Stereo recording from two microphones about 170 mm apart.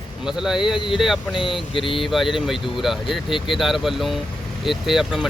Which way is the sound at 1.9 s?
Centre (ahead or behind).